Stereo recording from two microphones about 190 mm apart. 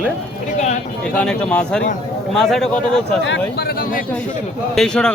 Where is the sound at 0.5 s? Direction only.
35° left (ahead or behind).